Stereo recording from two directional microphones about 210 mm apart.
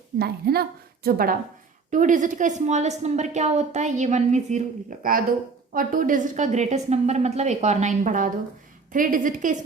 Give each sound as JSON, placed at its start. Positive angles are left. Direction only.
{"t": 0.2, "sound": "a woman's voice", "side_deg": -50}